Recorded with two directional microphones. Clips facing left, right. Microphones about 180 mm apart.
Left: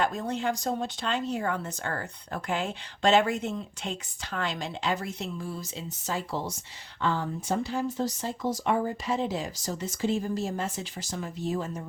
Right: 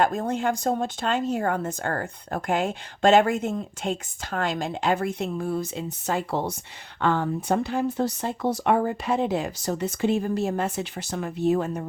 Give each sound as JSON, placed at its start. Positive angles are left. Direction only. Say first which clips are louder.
{"t": 0.0, "sound": "speech", "louder": "right 5 dB", "side_deg": -50}